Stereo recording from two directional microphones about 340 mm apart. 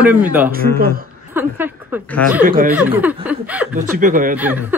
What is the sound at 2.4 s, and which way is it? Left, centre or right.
Speech, right.